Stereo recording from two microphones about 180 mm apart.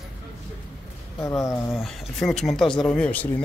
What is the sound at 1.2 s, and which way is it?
Speech, 20° left (ahead or behind).